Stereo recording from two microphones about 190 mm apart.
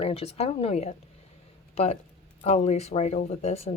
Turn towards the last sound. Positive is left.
turn(degrees=35)  # may be behind; listen again after turning